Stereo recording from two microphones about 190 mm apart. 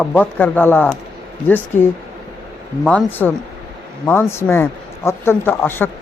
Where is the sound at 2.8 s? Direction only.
5° left (ahead or behind).